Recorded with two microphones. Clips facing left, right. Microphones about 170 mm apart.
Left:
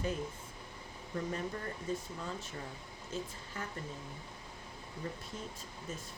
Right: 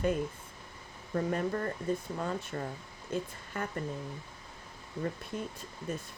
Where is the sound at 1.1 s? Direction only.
60° right (ahead or behind).